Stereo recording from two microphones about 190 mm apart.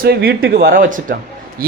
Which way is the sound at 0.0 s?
55° right (ahead or behind).